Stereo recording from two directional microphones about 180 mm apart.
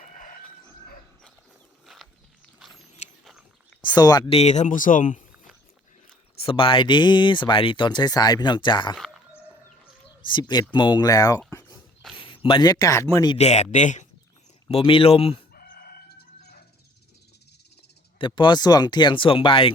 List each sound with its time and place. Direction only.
1.9 s a sound: centre (ahead or behind)
2.6 s rodents: centre (ahead or behind)
3.8 s speech: 20° left (ahead or behind)
4.3 s speech: 35° left (ahead or behind)
6.4 s speech: 30° left (ahead or behind)
9.0 s a sound: centre (ahead or behind)
10.2 s speech: 25° left (ahead or behind)
13.3 s speech: 40° left (ahead or behind)
14.7 s speech: 30° left (ahead or behind)
15.5 s chicken: 55° left (ahead or behind)
18.2 s speech: 25° left (ahead or behind)